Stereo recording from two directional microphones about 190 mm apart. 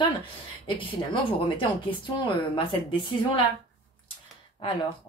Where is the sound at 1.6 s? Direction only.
25° left (ahead or behind).